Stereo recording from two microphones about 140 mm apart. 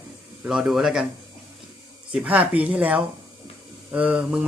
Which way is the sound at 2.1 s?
10° right (ahead or behind).